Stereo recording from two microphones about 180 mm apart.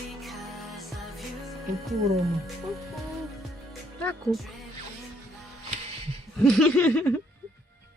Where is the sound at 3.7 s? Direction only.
Centre (ahead or behind).